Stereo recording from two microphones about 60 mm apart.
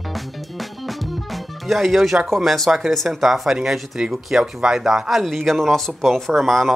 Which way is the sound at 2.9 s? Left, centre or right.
Centre.